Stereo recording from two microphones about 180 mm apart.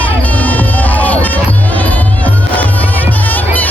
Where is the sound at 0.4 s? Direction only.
10° left (ahead or behind).